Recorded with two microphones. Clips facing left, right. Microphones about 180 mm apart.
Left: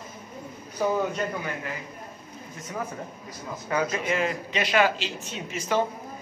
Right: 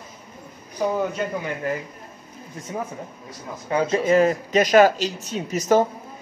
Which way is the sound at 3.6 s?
25° right (ahead or behind).